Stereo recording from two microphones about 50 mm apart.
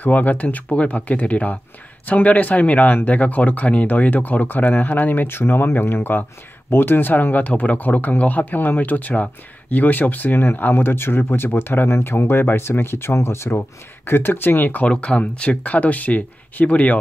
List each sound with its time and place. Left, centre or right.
0.0 s speech: left
14.9 s speech: left